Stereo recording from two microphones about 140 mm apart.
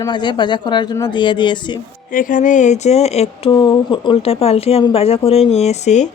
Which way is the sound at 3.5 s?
40° left (ahead or behind).